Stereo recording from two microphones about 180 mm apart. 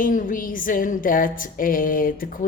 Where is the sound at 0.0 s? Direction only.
50° left (ahead or behind).